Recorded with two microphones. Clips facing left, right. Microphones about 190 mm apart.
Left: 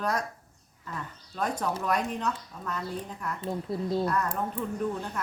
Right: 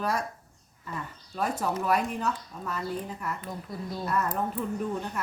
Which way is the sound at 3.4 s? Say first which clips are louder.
Left 6 dB; 25° left (ahead or behind).